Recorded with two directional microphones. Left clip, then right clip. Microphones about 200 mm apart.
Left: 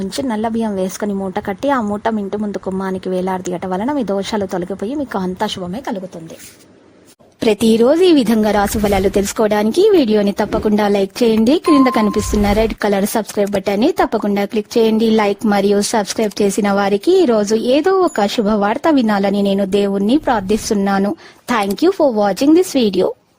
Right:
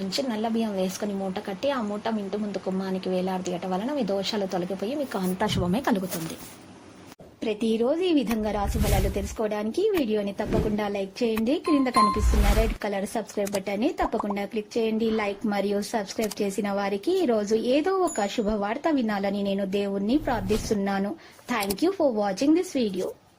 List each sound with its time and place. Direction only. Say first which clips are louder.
0.3 s a woman's voice: left 9 dB; 45° left (ahead or behind)
5.5 s speech: left 2 dB; 5° left (ahead or behind)
7.4 s a woman's voice: left 13 dB; 65° left (ahead or behind)